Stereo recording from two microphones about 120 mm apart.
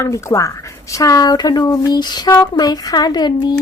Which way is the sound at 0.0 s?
25° left (ahead or behind).